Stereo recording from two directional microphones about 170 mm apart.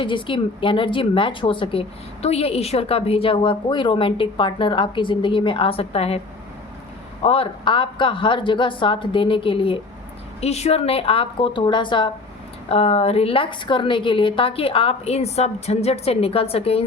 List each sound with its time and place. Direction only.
0.0 s a woman's voice: 30° left (ahead or behind)